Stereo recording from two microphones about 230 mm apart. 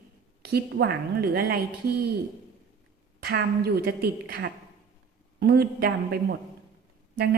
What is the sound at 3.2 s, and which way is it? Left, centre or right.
A woman's voice, right.